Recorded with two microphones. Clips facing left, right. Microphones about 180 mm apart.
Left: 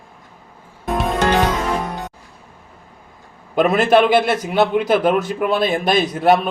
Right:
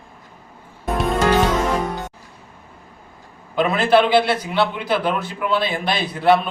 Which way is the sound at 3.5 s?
50° left (ahead or behind).